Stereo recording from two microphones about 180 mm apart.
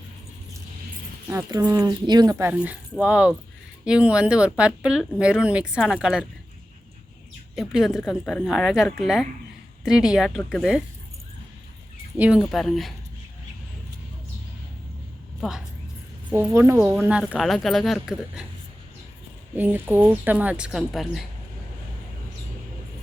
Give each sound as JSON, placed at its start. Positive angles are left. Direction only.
{"t": 1.3, "sound": "a woman's voice", "side_deg": -20}
{"t": 7.5, "sound": "speech", "side_deg": 0}
{"t": 12.1, "sound": "speech", "side_deg": -10}
{"t": 15.4, "sound": "a woman's voice", "side_deg": 0}
{"t": 16.3, "sound": "speech", "side_deg": -15}
{"t": 19.5, "sound": "a woman's voice", "side_deg": -10}